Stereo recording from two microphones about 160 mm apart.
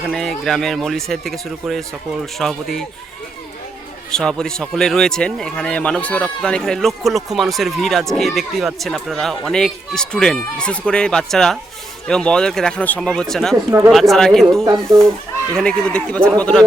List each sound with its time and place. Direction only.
0.1 s speech: 5° left (ahead or behind)
4.1 s speech: 5° left (ahead or behind)
13.7 s speech: 15° right (ahead or behind)
13.9 s speech: centre (ahead or behind)
14.6 s speech: 20° right (ahead or behind)
15.5 s speech: 5° left (ahead or behind)